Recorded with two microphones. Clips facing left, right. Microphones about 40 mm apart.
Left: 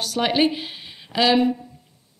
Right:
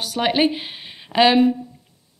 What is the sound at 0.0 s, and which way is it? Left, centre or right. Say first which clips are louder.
Speech: right 1 dB; centre.